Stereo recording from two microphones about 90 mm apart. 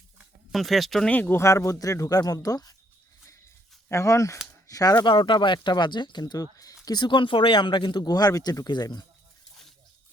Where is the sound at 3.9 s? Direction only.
35° left (ahead or behind).